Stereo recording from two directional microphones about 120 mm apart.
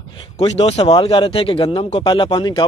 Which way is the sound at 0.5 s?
55° left (ahead or behind).